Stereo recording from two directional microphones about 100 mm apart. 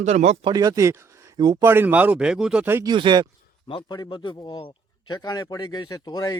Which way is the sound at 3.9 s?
45° left (ahead or behind).